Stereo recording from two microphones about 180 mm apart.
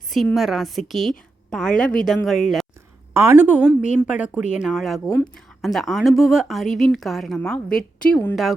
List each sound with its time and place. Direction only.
0.1 s speech: centre (ahead or behind)
3.1 s a woman's voice: 15° right (ahead or behind)
5.0 s speech: 20° left (ahead or behind)
5.6 s speech: centre (ahead or behind)